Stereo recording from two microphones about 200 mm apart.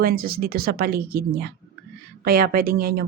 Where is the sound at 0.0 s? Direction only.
45° right (ahead or behind).